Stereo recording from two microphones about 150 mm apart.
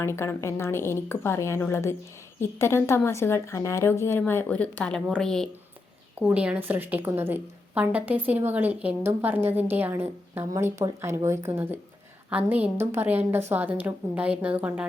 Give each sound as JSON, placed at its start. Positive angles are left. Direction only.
{"t": 0.0, "sound": "speech", "side_deg": 15}
{"t": 6.1, "sound": "a woman's voice", "side_deg": -10}